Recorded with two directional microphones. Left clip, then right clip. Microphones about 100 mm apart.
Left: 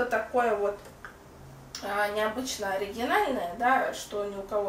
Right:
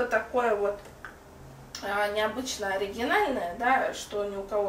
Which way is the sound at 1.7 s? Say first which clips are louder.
Right 1 dB; centre (ahead or behind).